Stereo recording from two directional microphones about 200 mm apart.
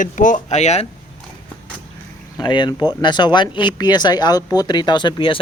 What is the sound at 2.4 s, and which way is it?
Speech, 20° left (ahead or behind).